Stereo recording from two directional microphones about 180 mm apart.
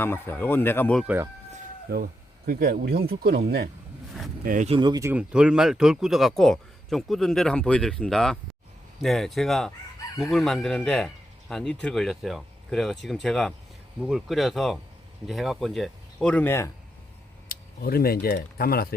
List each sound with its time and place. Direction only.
0.0 s speech: 10° left (ahead or behind)
1.0 s speech: 10° right (ahead or behind)
1.9 s speech: 60° right (ahead or behind)
4.4 s speech: 45° right (ahead or behind)
4.7 s speech: 25° right (ahead or behind)
5.1 s speech: 5° right (ahead or behind); by 16.7 s 15° left (ahead or behind)
17.5 s speech: 55° left (ahead or behind)